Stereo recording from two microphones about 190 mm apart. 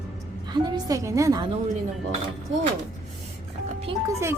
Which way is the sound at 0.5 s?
20° right (ahead or behind).